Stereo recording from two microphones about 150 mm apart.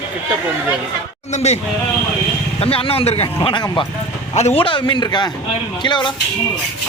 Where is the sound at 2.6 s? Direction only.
40° left (ahead or behind).